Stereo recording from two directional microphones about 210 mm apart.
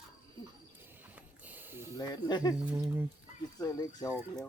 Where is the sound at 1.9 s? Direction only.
20° left (ahead or behind).